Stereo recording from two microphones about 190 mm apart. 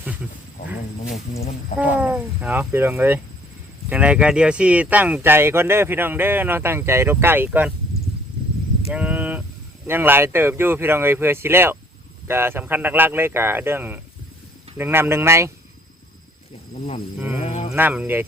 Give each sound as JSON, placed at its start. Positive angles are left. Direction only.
{"t": 2.0, "sound": "speech", "side_deg": -10}
{"t": 8.9, "sound": "a sound", "side_deg": -5}
{"t": 9.8, "sound": "speech", "side_deg": -10}
{"t": 16.7, "sound": "speech", "side_deg": 40}
{"t": 17.2, "sound": "speech", "side_deg": -10}
{"t": 17.4, "sound": "speech", "side_deg": 35}
{"t": 17.7, "sound": "speech", "side_deg": -10}